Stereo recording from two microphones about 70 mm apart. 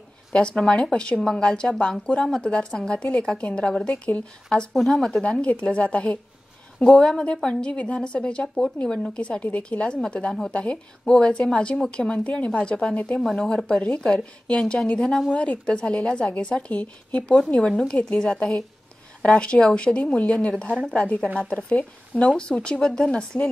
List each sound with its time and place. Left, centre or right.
0.3 s speech: centre
4.7 s speech: centre
5.2 s speech: centre
6.8 s speech: centre
7.6 s speech: centre
13.2 s speech: centre
15.0 s speech: centre
15.4 s speech: centre
17.5 s speech: centre